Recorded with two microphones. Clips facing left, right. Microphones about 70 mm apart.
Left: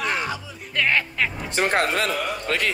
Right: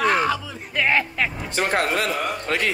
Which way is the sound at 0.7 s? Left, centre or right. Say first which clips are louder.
Right 1 dB; centre.